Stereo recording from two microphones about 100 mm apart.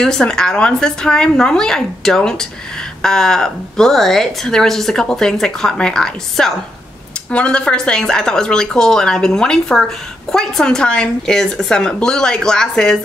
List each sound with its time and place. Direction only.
0.0 s a woman's voice: 5° left (ahead or behind)